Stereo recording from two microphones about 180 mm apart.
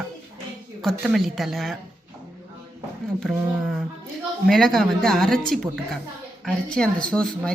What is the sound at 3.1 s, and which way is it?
Speech, centre (ahead or behind).